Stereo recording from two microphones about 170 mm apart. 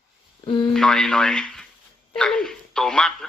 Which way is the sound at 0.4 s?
30° left (ahead or behind).